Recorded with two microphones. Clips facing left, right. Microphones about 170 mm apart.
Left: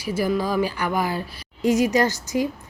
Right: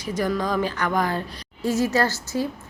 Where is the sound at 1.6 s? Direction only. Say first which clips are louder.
Left 3 dB; 15° left (ahead or behind).